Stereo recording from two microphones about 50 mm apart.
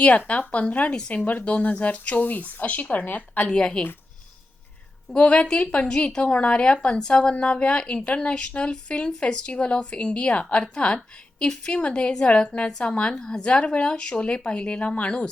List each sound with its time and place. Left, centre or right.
0.3 s speech: left
3.5 s a woman's voice: centre
5.1 s a woman's voice: left